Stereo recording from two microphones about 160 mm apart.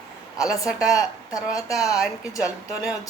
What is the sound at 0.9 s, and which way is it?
Speech, 20° left (ahead or behind).